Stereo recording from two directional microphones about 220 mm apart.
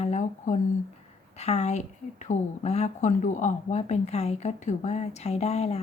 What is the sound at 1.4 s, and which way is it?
A woman's voice, 30° left (ahead or behind).